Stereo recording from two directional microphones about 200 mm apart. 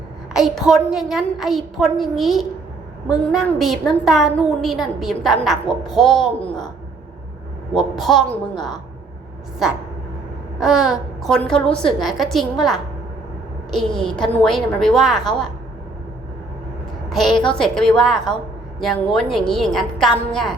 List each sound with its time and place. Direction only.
0.3 s a woman's voice: centre (ahead or behind)
7.7 s a woman's voice: centre (ahead or behind)
8.5 s a woman's voice: 20° left (ahead or behind)
10.6 s a woman's voice: 5° right (ahead or behind)
17.1 s a woman's voice: centre (ahead or behind)